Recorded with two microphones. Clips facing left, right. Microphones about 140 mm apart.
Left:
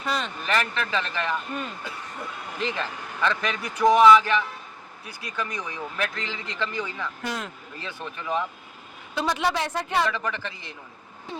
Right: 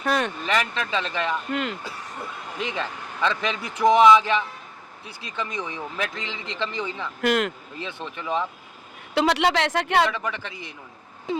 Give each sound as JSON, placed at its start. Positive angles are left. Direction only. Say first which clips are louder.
{"t": 0.0, "sound": "vehicle", "louder": "right 5 dB", "side_deg": -60}
{"t": 0.4, "sound": "speech", "louder": "right 1 dB", "side_deg": -15}
{"t": 2.6, "sound": "speech", "louder": "even", "side_deg": -15}
{"t": 7.2, "sound": "speech", "louder": "right 13 dB", "side_deg": -80}
{"t": 7.8, "sound": "speech", "louder": "right 1 dB", "side_deg": -20}
{"t": 9.1, "sound": "speech", "louder": "right 5 dB", "side_deg": -70}
{"t": 10.1, "sound": "speech", "louder": "even", "side_deg": -15}